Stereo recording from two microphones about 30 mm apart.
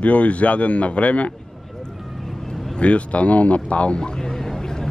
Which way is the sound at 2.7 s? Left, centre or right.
Left.